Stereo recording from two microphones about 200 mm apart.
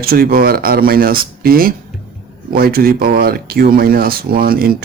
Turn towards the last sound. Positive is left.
turn(degrees=-50)  # may be behind; listen again after turning